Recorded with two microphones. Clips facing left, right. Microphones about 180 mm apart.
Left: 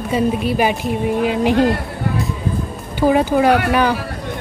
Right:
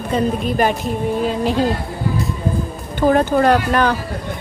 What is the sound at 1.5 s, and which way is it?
Speech, 65° left (ahead or behind).